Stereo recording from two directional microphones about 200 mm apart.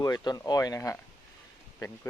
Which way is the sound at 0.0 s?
20° left (ahead or behind).